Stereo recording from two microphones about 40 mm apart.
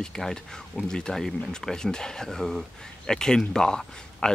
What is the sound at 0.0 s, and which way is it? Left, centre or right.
Speech, centre.